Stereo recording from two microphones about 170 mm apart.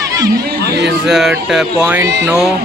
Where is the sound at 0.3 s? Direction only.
70° right (ahead or behind).